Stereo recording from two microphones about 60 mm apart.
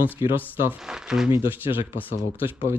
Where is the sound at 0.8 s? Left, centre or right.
Centre.